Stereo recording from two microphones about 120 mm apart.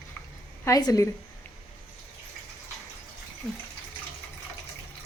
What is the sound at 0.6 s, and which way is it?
Speech, 30° left (ahead or behind).